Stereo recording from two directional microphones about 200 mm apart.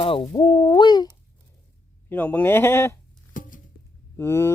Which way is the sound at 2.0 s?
10° left (ahead or behind).